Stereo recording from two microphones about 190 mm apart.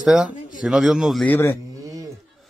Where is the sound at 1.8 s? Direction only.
20° right (ahead or behind).